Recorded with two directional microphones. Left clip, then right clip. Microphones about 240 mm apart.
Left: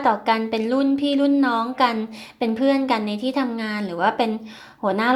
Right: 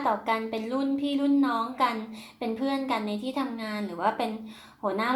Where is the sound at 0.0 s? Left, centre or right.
Left.